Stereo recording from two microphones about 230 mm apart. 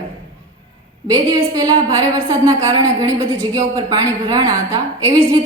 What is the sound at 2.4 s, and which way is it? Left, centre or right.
A woman's voice, centre.